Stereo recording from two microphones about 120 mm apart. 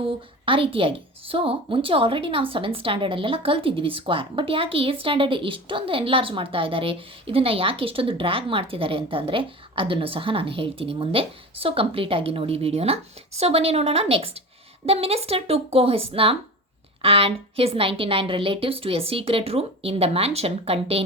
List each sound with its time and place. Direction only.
0.4 s a woman's voice: 50° right (ahead or behind)